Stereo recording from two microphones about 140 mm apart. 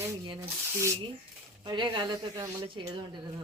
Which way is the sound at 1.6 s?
35° right (ahead or behind).